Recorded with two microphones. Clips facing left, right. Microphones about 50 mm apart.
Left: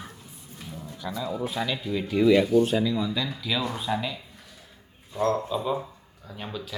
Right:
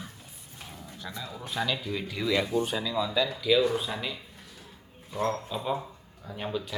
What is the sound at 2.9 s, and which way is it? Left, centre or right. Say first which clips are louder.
Speech: right 1 dB; centre.